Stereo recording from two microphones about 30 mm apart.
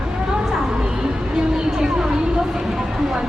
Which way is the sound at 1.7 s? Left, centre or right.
Right.